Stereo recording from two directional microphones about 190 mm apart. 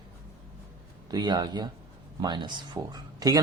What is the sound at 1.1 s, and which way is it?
Speech, 20° right (ahead or behind).